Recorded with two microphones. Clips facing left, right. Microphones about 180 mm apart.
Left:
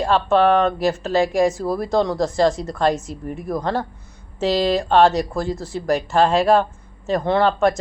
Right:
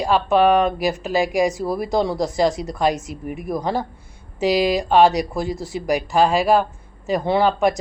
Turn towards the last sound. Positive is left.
turn(degrees=-10)  # may be behind; listen again after turning